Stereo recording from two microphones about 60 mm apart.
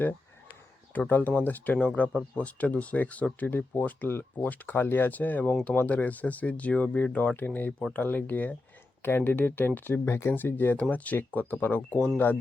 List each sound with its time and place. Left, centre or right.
0.9 s speech: left
1.8 s speech: centre; by 10.0 s left
10.1 s speech: left
10.3 s speech: left
10.8 s speech: left